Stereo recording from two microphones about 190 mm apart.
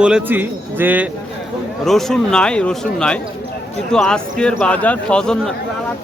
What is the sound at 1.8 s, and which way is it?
Speech, centre (ahead or behind).